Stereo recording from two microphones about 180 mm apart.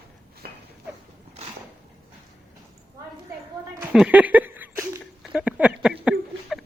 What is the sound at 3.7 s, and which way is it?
Chuckle, 5° right (ahead or behind).